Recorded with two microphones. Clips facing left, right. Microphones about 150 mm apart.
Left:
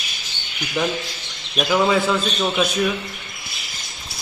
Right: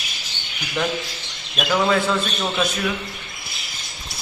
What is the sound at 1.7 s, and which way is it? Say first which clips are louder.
Speech: left 1 dB; 5° left (ahead or behind).